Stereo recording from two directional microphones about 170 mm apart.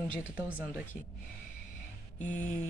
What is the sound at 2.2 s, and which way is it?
Speech, 10° left (ahead or behind).